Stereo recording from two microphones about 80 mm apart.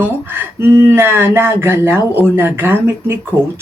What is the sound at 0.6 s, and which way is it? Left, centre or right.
Speech, right.